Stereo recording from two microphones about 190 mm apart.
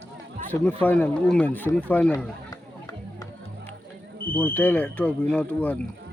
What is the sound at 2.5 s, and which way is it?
Music, 20° left (ahead or behind).